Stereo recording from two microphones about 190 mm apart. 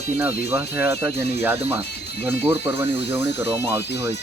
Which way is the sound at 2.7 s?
65° left (ahead or behind).